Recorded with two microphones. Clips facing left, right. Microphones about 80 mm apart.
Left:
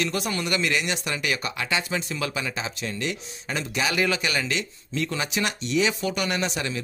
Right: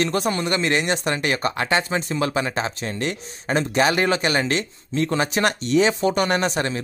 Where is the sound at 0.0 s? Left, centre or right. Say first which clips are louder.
Right 5 dB; right.